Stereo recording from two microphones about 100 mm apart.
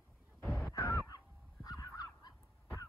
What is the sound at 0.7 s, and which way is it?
Honk, 30° left (ahead or behind).